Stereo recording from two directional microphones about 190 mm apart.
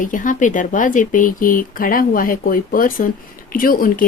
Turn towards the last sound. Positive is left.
turn(degrees=50)  # may be behind; listen again after turning